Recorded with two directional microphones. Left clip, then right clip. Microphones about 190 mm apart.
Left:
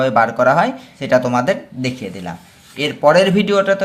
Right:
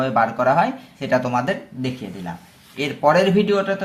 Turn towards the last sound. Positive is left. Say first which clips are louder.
# left 4 dB
turn(degrees=25)  # may be behind; listen again after turning